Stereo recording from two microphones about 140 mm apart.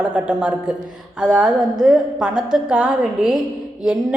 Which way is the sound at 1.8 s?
5° right (ahead or behind).